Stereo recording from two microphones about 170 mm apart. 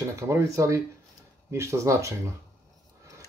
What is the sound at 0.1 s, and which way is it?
Speech, 15° right (ahead or behind).